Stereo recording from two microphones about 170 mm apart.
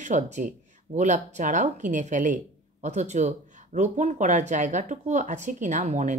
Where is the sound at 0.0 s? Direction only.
45° right (ahead or behind).